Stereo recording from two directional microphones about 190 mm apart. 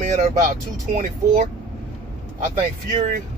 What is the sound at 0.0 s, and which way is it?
Speech, 40° right (ahead or behind).